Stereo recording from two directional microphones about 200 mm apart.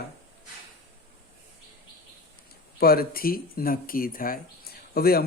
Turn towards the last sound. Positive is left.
turn(degrees=50)  # may be behind; listen again after turning